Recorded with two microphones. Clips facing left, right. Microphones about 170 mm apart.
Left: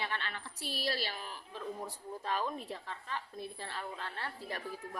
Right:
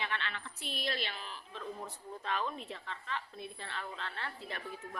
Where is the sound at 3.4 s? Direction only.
35° left (ahead or behind).